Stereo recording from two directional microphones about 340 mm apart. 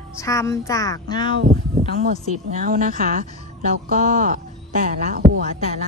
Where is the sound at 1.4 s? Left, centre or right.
Right.